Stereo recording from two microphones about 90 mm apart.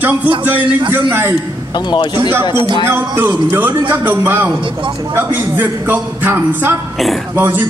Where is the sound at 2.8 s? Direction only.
25° right (ahead or behind).